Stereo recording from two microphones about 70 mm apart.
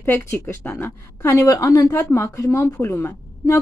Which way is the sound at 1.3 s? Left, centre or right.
Left.